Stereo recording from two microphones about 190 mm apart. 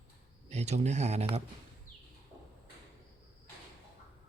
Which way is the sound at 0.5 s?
35° right (ahead or behind).